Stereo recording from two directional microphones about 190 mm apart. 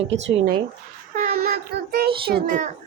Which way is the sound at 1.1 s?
45° right (ahead or behind).